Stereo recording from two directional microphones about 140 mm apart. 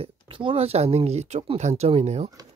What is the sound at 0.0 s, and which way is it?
Speech, 40° right (ahead or behind).